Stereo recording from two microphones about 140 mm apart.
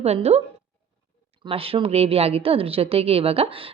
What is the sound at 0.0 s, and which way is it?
Speech, 50° right (ahead or behind).